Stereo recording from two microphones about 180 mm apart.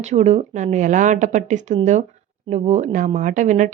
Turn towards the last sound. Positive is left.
turn(degrees=-45)  # may be behind; listen again after turning